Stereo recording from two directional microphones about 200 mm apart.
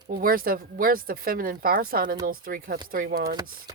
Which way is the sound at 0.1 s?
45° right (ahead or behind).